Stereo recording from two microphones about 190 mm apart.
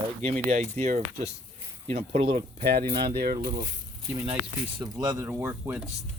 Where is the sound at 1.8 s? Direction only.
35° right (ahead or behind).